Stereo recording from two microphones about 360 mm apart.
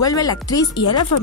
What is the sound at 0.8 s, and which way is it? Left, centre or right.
Speech, left.